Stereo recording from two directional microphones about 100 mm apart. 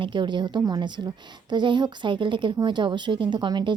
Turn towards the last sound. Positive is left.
turn(degrees=-50)  # may be behind; listen again after turning